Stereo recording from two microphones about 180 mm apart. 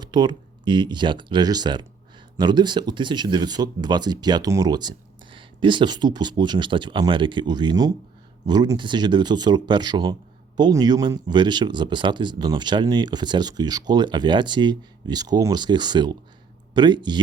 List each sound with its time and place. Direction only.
0.0 s speech: 25° right (ahead or behind)